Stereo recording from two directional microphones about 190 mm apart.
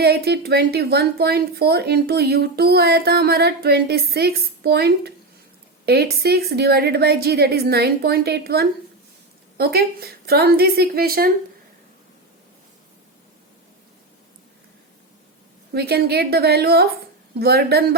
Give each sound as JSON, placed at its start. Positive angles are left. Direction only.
{"t": 0.0, "sound": "speech", "side_deg": -55}
{"t": 15.7, "sound": "speech", "side_deg": -55}